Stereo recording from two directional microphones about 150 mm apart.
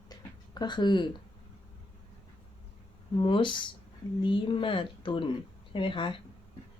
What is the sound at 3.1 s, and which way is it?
Speech, 35° left (ahead or behind).